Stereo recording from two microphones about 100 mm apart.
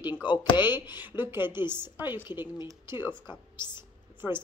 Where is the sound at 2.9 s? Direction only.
55° left (ahead or behind).